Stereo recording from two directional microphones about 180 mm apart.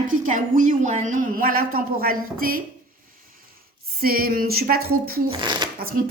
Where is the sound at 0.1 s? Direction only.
45° right (ahead or behind).